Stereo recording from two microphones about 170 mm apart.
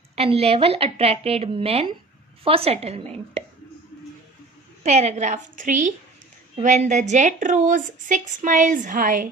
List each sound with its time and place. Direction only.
0.2 s a woman's voice: 35° right (ahead or behind)
4.8 s speech: 40° right (ahead or behind)